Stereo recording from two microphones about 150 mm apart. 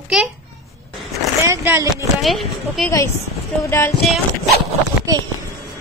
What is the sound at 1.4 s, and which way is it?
Speech, 15° right (ahead or behind).